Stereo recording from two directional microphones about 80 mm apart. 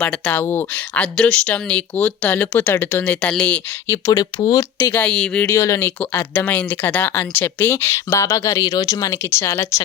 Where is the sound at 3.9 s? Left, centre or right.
Left.